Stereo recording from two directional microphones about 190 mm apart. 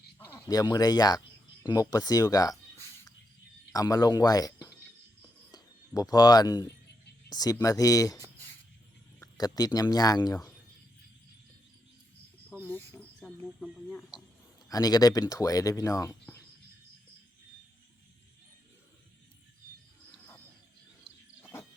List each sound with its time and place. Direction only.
0.3 s speech: 15° left (ahead or behind)
9.2 s speech: 20° left (ahead or behind)
12.5 s a sound: 10° left (ahead or behind)
14.7 s speech: 20° left (ahead or behind)